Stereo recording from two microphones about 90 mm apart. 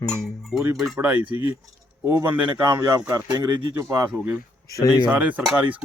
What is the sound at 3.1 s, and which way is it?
Speech, 45° right (ahead or behind).